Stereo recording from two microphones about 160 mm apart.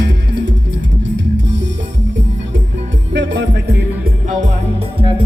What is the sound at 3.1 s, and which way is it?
Music, 90° right.